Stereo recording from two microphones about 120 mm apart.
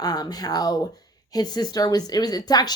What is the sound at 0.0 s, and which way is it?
Speech, 35° left (ahead or behind).